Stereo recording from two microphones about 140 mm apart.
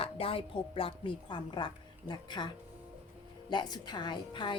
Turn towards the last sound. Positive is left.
turn(degrees=35)  # may be behind; listen again after turning